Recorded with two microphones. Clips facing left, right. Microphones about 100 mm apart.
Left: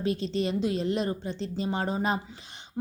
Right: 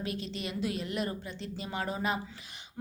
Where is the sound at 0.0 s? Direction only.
30° left (ahead or behind).